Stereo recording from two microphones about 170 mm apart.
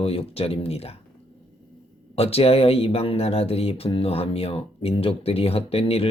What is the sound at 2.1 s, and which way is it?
Speech, 35° left (ahead or behind).